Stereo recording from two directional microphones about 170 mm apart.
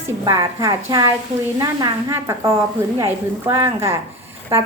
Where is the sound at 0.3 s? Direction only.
20° right (ahead or behind).